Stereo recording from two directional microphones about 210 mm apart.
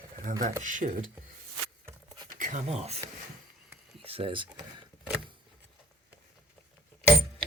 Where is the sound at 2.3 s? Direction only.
35° right (ahead or behind).